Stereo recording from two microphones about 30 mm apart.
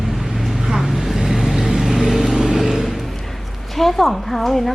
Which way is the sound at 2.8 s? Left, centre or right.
Centre.